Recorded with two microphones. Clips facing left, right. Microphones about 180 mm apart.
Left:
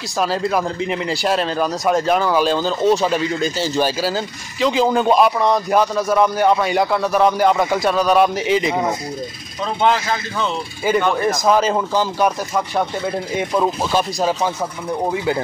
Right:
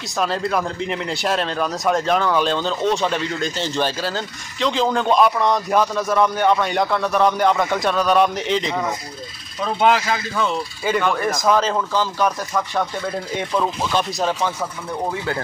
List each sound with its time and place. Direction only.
0.2 s speech: 5° left (ahead or behind)
9.8 s speech: 5° right (ahead or behind)
10.9 s speech: 10° left (ahead or behind)